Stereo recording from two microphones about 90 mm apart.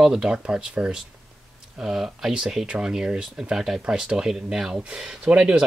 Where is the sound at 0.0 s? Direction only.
5° right (ahead or behind).